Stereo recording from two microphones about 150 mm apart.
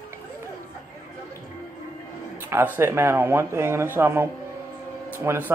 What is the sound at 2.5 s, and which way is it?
Speech, 15° right (ahead or behind).